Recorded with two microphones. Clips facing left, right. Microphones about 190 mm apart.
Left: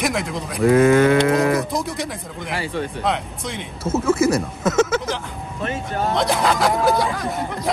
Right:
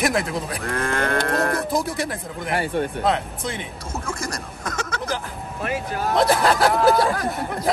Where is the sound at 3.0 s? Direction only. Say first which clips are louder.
Right 1 dB; centre (ahead or behind).